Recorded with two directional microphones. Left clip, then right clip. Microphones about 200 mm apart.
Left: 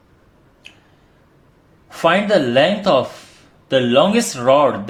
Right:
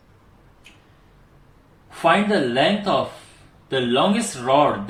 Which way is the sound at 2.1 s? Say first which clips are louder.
Left 3 dB; 60° left (ahead or behind).